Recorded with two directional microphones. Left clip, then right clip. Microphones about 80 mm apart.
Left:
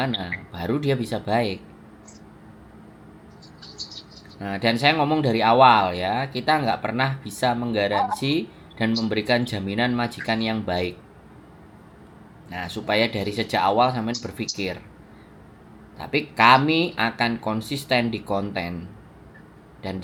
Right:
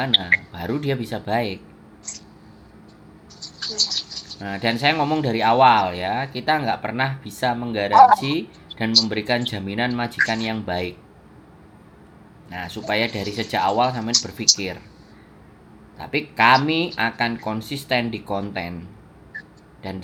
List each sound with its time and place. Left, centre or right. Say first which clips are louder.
0.5 s speech: left 1 dB; centre
3.4 s a sound: right 15 dB; right
4.4 s speech: left 1 dB; centre
12.5 s speech: even; centre
16.0 s speech: even; centre
19.8 s speech: left 1 dB; centre